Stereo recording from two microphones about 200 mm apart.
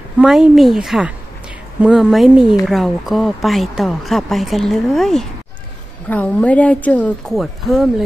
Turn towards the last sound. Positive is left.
turn(degrees=0)  # may be behind; listen again after turning